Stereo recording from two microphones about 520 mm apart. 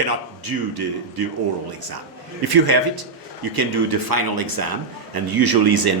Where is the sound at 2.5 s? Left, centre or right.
Right.